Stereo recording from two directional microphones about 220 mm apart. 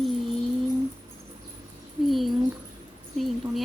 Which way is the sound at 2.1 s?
Centre (ahead or behind).